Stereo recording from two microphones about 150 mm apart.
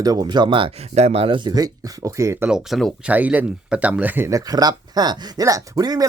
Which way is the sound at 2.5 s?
5° right (ahead or behind).